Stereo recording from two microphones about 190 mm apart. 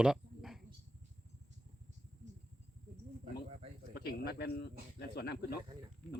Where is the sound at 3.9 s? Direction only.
55° left (ahead or behind).